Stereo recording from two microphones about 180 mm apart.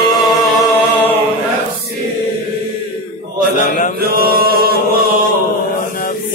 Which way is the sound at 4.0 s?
55° right (ahead or behind).